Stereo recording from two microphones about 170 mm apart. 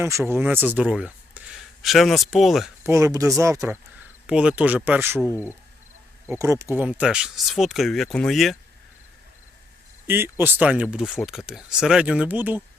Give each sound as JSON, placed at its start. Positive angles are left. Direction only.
{"t": 0.0, "sound": "speech", "side_deg": -15}
{"t": 2.8, "sound": "speech", "side_deg": -15}
{"t": 4.3, "sound": "speech", "side_deg": -5}
{"t": 10.1, "sound": "speech", "side_deg": -15}